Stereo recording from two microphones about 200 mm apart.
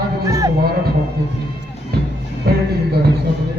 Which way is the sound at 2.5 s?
50° right (ahead or behind).